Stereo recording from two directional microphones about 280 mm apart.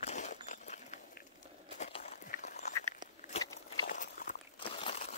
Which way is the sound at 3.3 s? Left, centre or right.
Left.